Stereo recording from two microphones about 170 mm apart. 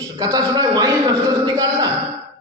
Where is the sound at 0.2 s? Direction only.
20° right (ahead or behind).